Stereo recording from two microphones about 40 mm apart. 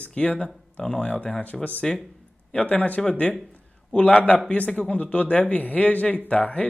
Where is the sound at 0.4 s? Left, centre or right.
Left.